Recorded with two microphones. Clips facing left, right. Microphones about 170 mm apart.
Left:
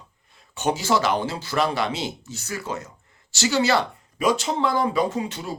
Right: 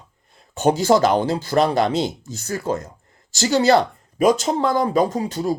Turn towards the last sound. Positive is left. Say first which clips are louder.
# right 6 dB
turn(degrees=-40)  # may be behind; listen again after turning